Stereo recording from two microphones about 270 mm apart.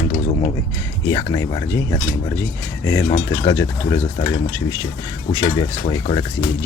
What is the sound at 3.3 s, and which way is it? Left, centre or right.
Speech, centre.